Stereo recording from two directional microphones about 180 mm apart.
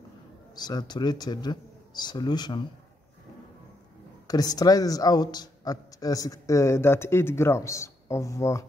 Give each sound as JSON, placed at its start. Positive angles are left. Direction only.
{"t": 0.6, "sound": "speech", "side_deg": 20}
{"t": 4.3, "sound": "speech", "side_deg": 20}